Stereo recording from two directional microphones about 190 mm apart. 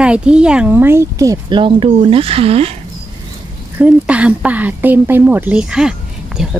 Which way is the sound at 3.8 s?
5° right (ahead or behind).